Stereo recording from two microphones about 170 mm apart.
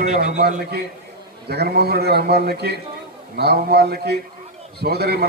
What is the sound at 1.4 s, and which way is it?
A man's voice, 70° right (ahead or behind).